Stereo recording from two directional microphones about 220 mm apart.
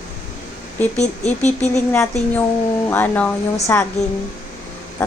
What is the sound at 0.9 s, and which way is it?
Speech, 30° left (ahead or behind).